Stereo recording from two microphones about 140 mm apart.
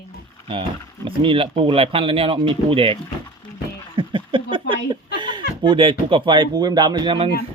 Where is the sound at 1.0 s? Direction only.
40° right (ahead or behind).